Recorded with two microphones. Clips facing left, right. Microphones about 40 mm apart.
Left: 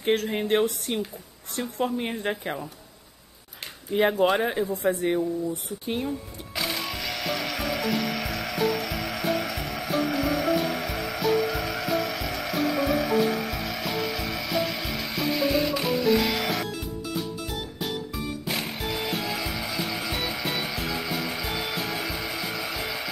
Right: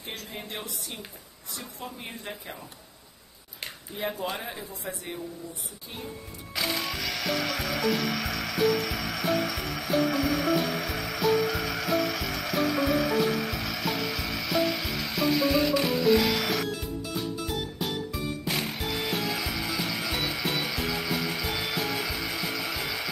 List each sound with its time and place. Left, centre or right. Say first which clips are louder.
0.0 s speech: left 14 dB; left
3.9 s speech: left 11 dB; left
6.5 s music: even; centre